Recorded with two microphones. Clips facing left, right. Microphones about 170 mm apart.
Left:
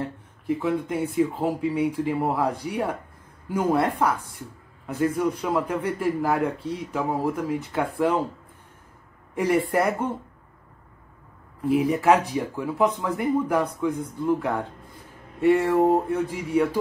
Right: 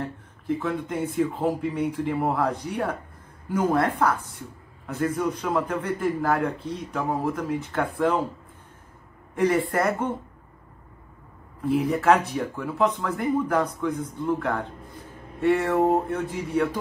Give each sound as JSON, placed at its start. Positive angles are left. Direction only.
{"t": 0.6, "sound": "speech", "side_deg": 10}
{"t": 9.3, "sound": "speech", "side_deg": 10}
{"t": 11.6, "sound": "speech", "side_deg": 15}